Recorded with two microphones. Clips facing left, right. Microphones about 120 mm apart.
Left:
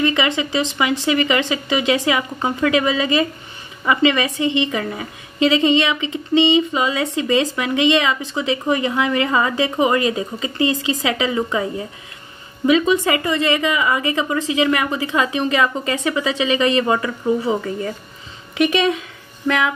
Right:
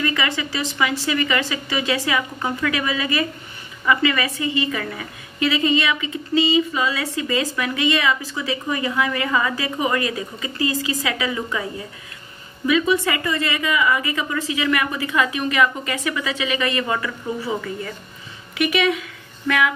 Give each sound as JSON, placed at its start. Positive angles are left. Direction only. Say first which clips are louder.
{"t": 0.0, "sound": "a woman's voice", "louder": "left 5 dB", "side_deg": 20}
{"t": 12.6, "sound": "a woman's voice", "louder": "left 3 dB", "side_deg": 25}
{"t": 18.7, "sound": "a woman's voice", "louder": "left 2 dB", "side_deg": 30}